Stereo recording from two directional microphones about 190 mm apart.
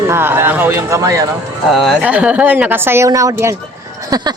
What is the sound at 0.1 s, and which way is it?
A woman's voice, 10° right (ahead or behind).